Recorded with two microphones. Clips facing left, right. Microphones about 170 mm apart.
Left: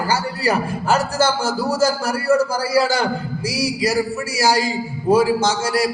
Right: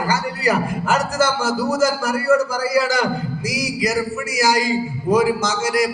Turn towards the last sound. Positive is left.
turn(degrees=30)  # may be behind; listen again after turning